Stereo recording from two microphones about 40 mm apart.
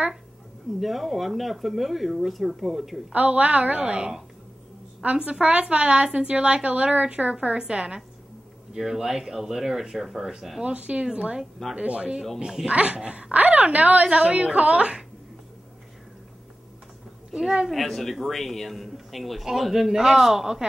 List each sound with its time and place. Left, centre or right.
0.7 s a man's voice: centre
3.1 s a woman's voice: right
5.2 s a woman's voice: right
8.7 s speech: centre
10.6 s a woman's voice: right
17.3 s speech: centre
17.6 s a man's voice: centre